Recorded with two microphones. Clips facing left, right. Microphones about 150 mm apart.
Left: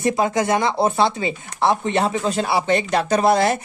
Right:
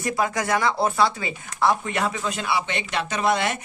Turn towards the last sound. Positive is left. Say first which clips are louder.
# left 6 dB
turn(degrees=35)  # may be behind; listen again after turning